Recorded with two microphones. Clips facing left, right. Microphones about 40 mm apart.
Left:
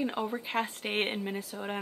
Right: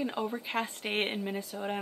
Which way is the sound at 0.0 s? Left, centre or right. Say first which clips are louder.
Left 1 dB; centre.